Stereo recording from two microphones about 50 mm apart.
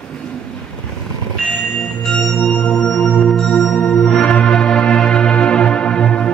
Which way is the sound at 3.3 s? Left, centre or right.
Centre.